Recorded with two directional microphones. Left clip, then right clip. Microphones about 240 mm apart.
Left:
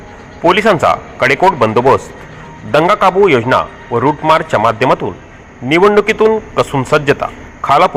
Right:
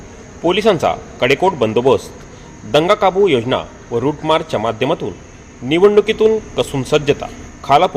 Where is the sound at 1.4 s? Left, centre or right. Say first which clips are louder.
Left 5 dB; left.